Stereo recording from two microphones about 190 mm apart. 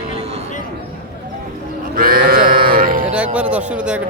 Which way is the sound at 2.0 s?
50° right (ahead or behind).